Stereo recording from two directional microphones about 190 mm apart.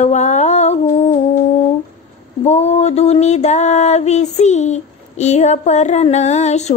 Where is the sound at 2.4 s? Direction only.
35° left (ahead or behind).